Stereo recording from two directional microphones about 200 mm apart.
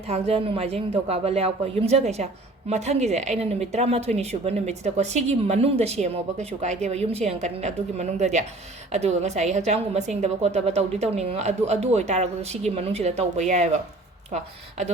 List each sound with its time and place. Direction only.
0.1 s speech: 30° right (ahead or behind)